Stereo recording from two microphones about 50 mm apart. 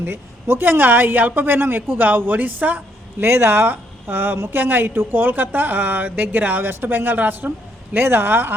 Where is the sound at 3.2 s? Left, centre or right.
Right.